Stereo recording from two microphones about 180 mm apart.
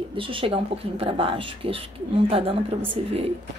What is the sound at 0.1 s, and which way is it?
A woman's voice, 30° right (ahead or behind).